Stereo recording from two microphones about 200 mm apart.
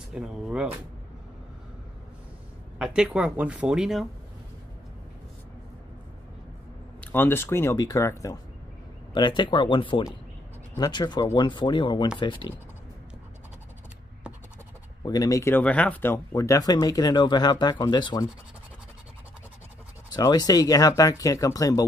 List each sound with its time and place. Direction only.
0.1 s speech: 5° right (ahead or behind)
2.8 s speech: 5° right (ahead or behind)
7.0 s speech: 10° left (ahead or behind)
15.0 s speech: 20° left (ahead or behind)
20.2 s speech: 20° left (ahead or behind)